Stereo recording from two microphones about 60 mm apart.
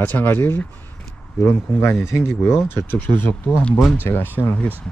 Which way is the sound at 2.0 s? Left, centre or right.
Left.